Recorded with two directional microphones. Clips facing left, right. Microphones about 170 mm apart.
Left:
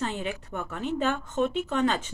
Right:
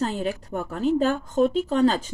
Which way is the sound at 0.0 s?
40° right (ahead or behind).